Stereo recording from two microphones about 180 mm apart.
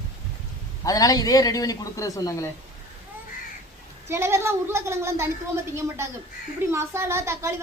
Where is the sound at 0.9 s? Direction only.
20° left (ahead or behind).